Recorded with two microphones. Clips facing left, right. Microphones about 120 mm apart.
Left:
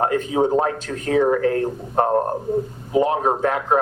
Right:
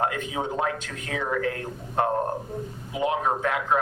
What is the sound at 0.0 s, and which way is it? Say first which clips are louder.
Speech: left 8 dB; 35° left (ahead or behind).